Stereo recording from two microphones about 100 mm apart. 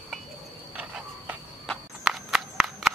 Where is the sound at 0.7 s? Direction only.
15° right (ahead or behind).